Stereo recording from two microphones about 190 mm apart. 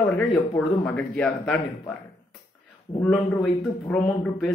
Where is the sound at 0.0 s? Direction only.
5° left (ahead or behind).